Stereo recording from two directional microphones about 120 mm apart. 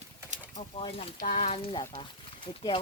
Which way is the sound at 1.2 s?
60° left (ahead or behind).